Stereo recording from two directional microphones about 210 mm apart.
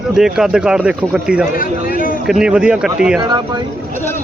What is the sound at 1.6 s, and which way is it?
Speech, 45° left (ahead or behind).